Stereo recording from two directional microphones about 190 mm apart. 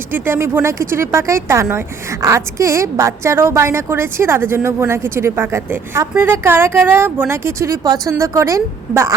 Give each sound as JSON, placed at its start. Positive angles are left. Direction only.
{"t": 0.1, "sound": "a woman's voice", "side_deg": -10}